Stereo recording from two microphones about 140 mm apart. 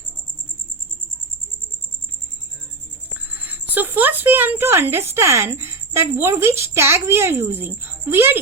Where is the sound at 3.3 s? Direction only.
10° right (ahead or behind).